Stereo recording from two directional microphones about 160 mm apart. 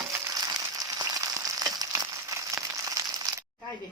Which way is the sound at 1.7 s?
25° right (ahead or behind).